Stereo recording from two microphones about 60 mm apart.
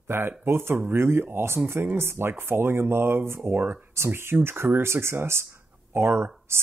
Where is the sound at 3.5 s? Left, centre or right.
Right.